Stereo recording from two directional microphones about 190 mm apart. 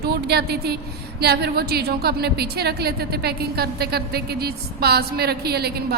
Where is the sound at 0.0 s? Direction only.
55° right (ahead or behind).